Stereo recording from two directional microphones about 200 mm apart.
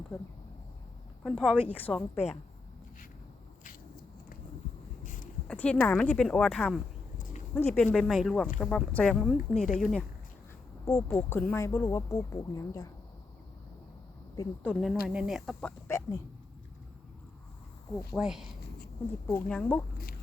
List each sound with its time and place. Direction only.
1.2 s speech: centre (ahead or behind)
5.0 s a sound: 40° left (ahead or behind)
5.5 s speech: 5° left (ahead or behind)
10.8 s speech: 15° left (ahead or behind)
14.6 s speech: 5° left (ahead or behind)
15.9 s speech: 15° left (ahead or behind)
18.2 s speech: centre (ahead or behind)